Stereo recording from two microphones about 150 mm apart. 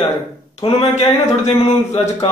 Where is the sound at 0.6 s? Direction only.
40° left (ahead or behind).